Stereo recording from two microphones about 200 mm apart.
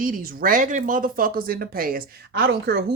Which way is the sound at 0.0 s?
45° right (ahead or behind).